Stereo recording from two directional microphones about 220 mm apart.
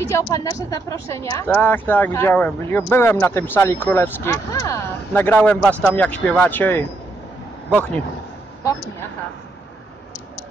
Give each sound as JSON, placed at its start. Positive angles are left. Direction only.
{"t": 0.1, "sound": "speech", "side_deg": 15}